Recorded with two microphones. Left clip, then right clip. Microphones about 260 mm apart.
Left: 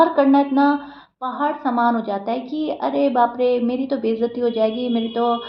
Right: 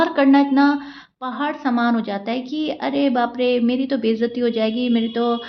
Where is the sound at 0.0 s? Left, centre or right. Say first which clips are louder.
Left 1 dB; right.